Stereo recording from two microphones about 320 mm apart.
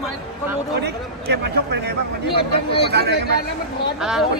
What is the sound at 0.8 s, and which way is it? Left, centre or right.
A man's voice, right.